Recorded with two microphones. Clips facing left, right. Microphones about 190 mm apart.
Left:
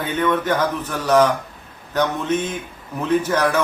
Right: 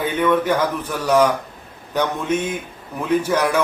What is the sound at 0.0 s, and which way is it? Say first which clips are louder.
Speech: right 2 dB; 10° right (ahead or behind).